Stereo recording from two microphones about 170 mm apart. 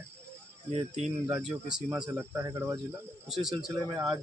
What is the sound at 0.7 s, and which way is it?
Speech, 40° right (ahead or behind).